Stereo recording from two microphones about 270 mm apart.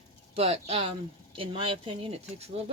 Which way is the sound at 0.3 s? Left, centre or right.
Right.